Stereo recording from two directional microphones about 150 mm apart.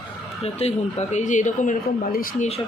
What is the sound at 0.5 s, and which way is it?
Speech, 45° left (ahead or behind).